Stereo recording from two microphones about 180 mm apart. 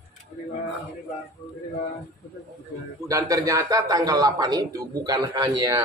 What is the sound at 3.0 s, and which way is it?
A man's voice, 20° right (ahead or behind).